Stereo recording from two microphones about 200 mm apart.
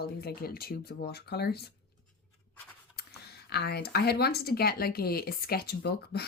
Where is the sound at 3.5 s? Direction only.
55° left (ahead or behind).